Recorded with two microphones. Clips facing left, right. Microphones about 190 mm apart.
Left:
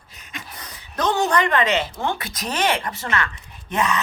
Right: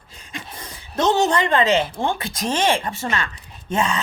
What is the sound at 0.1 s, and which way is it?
A woman's voice, 30° right (ahead or behind).